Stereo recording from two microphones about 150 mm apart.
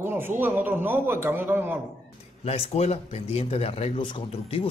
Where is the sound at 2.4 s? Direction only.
45° left (ahead or behind).